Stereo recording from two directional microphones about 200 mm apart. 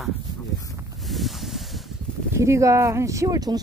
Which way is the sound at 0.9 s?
Centre (ahead or behind).